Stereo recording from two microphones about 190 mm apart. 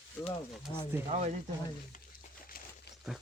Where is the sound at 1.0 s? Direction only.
35° right (ahead or behind).